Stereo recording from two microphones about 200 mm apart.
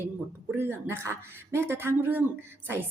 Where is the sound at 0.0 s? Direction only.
10° right (ahead or behind).